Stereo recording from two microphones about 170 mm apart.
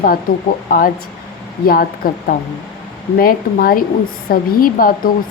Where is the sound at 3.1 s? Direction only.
60° left (ahead or behind).